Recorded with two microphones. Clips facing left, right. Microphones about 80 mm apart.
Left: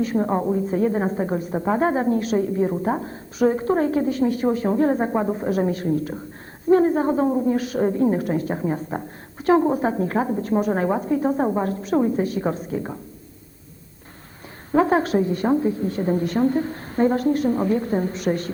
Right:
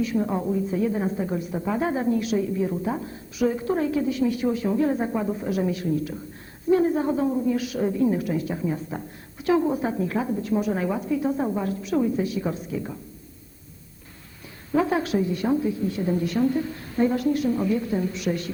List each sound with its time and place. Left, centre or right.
0.0 s a woman's voice: left
14.7 s a woman's voice: left